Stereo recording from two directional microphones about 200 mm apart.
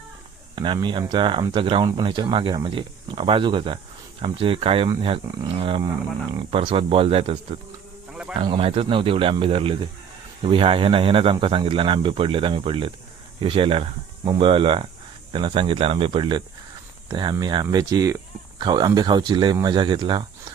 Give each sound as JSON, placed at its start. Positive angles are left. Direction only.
{"t": 0.5, "sound": "speech", "side_deg": -25}
{"t": 8.1, "sound": "a sound", "side_deg": -5}
{"t": 8.4, "sound": "speech", "side_deg": -25}